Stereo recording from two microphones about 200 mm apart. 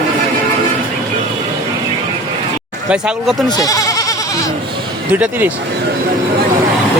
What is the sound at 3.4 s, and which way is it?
Goat, 20° left (ahead or behind).